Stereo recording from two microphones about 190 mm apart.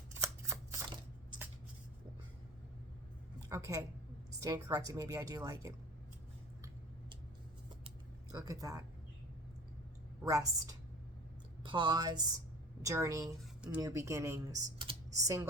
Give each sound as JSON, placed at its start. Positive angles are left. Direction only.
{"t": 0.1, "sound": "shuffling cards", "side_deg": -15}
{"t": 3.5, "sound": "speech", "side_deg": -15}
{"t": 7.9, "sound": "a sound", "side_deg": -20}
{"t": 10.2, "sound": "a woman's voice", "side_deg": -15}